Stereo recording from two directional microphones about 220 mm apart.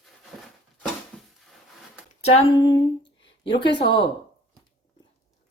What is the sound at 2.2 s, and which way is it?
Speech, 25° left (ahead or behind).